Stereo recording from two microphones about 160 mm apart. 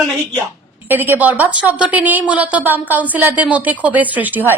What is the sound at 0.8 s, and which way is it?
A woman's voice, 10° right (ahead or behind).